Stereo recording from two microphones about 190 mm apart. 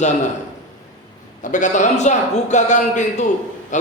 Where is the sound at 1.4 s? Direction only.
40° left (ahead or behind).